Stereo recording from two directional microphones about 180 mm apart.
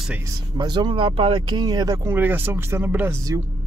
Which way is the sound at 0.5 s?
25° right (ahead or behind).